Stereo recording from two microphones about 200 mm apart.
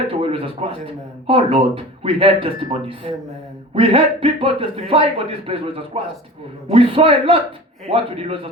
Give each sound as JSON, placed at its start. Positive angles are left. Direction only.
{"t": 0.1, "sound": "speech", "side_deg": -25}